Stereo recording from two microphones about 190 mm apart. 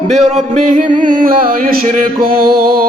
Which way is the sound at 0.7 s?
40° right (ahead or behind).